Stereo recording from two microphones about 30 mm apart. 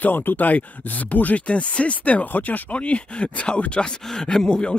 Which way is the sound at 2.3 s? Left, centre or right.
Left.